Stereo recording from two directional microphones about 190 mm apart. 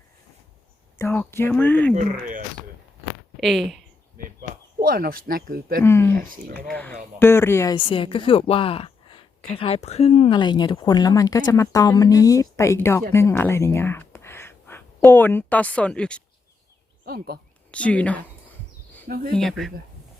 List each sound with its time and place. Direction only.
0.9 s a woman's voice: 10° left (ahead or behind)
3.4 s speech: centre (ahead or behind)
4.8 s speech: 50° right (ahead or behind)
5.8 s a woman's voice: 15° left (ahead or behind)
6.1 s speech: 50° right (ahead or behind)
7.2 s a woman's voice: 10° left (ahead or behind)
7.8 s a woman's voice: 25° left (ahead or behind); by 16.2 s 5° left (ahead or behind)
17.1 s speech: 55° right (ahead or behind)
17.7 s speech: 5° left (ahead or behind)
19.0 s speech: 55° right (ahead or behind)
19.4 s speech: centre (ahead or behind)